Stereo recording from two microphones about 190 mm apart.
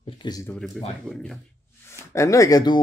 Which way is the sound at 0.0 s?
20° left (ahead or behind).